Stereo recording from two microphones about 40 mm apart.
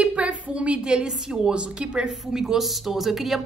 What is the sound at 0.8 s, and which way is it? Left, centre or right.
A woman's voice, centre.